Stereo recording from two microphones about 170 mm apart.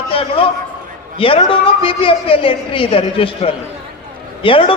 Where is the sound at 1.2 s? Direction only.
30° left (ahead or behind).